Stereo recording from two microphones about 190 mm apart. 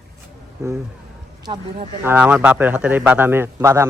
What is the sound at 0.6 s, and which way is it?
Speech, 15° right (ahead or behind).